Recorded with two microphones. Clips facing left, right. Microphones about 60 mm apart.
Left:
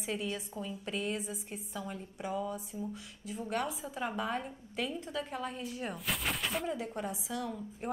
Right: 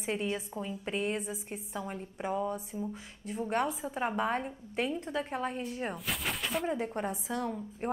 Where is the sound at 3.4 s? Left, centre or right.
Right.